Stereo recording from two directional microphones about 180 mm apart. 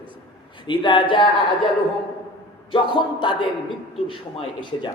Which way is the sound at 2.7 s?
25° left (ahead or behind).